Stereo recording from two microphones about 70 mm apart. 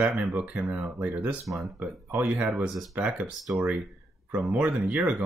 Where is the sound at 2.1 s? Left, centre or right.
Right.